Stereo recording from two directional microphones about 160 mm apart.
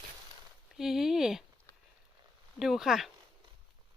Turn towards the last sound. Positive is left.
turn(degrees=-5)  # may be behind; listen again after turning